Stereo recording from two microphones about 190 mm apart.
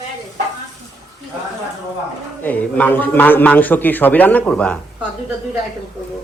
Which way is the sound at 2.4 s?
10° left (ahead or behind).